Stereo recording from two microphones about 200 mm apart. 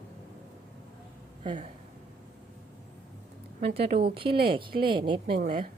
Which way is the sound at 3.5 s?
30° right (ahead or behind).